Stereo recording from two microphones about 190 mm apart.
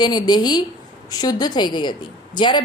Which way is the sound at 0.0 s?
20° left (ahead or behind).